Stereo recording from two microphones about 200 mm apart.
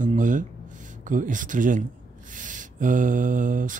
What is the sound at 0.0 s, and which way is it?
Speech, 40° right (ahead or behind).